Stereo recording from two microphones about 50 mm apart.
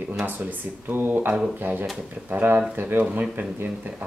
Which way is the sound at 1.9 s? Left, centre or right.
Right.